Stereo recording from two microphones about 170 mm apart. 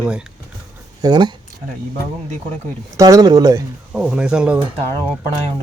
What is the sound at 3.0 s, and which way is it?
Speech, 20° right (ahead or behind).